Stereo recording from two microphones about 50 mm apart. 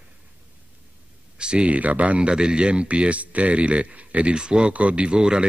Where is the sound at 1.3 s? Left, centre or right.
Right.